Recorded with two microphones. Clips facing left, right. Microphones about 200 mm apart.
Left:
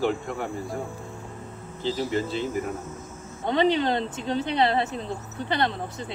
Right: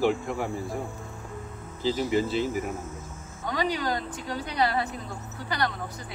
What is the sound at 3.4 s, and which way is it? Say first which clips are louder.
Speech: left 6 dB; 25° left (ahead or behind).